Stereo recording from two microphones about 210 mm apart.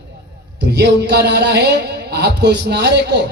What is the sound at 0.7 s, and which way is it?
A man's voice, 50° right (ahead or behind).